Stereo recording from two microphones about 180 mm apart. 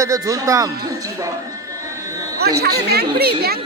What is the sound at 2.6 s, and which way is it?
Speech, 65° right (ahead or behind).